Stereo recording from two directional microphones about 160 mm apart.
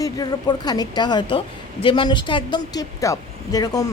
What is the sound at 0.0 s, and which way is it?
Speech, 25° left (ahead or behind).